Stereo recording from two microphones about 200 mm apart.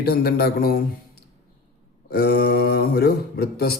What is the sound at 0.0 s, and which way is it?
Speech, 50° left (ahead or behind).